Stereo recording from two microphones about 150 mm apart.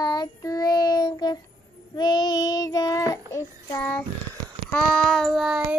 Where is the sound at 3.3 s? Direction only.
15° left (ahead or behind).